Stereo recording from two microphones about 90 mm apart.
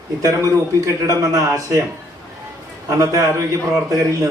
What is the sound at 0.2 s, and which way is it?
A man's voice, 40° right (ahead or behind).